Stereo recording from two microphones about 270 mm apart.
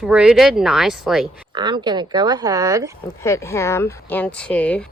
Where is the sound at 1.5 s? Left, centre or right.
Centre.